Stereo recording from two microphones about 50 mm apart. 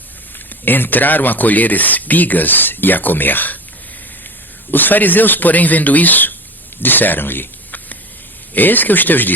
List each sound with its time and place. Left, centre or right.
0.6 s speech: left
4.7 s speech: left